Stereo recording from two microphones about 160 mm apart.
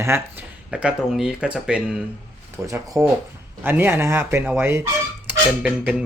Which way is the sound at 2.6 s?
20° right (ahead or behind).